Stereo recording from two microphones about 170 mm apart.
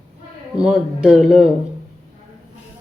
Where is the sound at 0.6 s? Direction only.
Centre (ahead or behind).